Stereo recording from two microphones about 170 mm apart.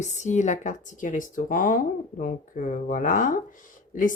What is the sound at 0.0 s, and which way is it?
Speech, 45° left (ahead or behind).